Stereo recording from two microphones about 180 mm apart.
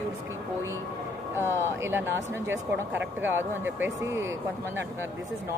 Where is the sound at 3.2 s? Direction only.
10° right (ahead or behind).